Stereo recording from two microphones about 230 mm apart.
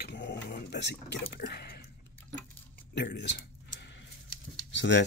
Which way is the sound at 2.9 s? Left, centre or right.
Left.